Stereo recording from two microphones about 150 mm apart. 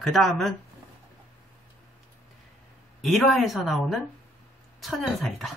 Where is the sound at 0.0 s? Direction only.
Centre (ahead or behind).